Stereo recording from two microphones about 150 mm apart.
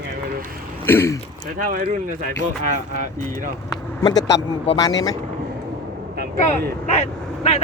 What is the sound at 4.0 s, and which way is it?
Speech, 30° left (ahead or behind).